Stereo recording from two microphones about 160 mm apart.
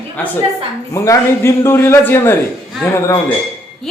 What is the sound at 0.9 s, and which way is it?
A man's voice, 15° left (ahead or behind).